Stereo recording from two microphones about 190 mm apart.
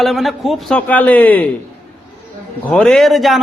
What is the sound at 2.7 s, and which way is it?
Speech, centre (ahead or behind).